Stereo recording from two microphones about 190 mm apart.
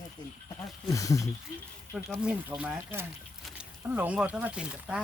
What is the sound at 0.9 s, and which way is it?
Speech, 15° left (ahead or behind).